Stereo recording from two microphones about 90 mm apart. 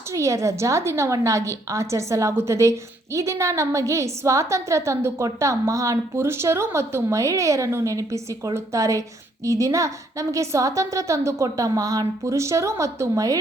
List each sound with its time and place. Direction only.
0.1 s a woman's voice: 35° right (ahead or behind)